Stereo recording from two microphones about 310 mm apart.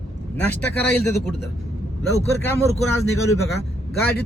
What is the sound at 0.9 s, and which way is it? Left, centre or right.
Speech, centre.